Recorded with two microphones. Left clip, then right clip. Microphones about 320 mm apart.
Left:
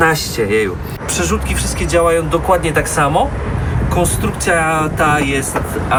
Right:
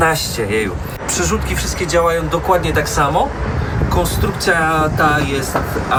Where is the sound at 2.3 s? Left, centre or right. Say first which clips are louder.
Left 1 dB; centre.